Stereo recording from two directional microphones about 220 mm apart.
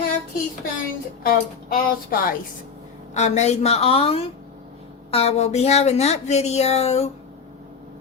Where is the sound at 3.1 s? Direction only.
30° left (ahead or behind).